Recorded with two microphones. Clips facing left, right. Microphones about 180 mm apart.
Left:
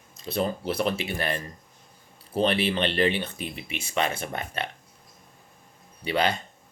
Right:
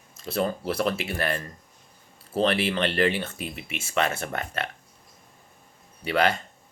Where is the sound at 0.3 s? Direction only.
20° left (ahead or behind).